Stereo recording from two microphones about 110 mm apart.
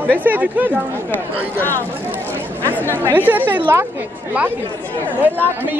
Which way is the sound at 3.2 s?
15° right (ahead or behind).